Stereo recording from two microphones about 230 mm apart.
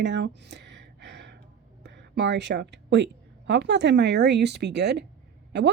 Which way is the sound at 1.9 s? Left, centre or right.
Right.